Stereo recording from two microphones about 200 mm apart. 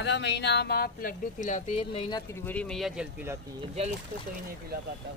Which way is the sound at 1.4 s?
35° left (ahead or behind).